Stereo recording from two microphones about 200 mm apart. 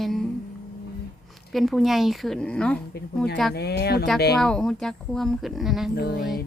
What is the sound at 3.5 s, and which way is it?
Speech, 55° left (ahead or behind).